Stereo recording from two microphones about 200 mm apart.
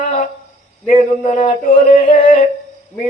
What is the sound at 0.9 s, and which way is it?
Speech, 35° left (ahead or behind).